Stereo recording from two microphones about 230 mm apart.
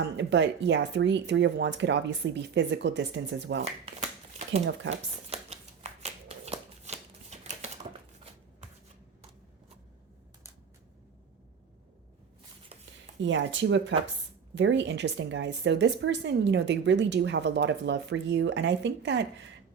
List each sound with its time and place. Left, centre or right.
0.2 s a woman's voice: right
5.3 s shuffling cards: right
13.2 s a woman's voice: right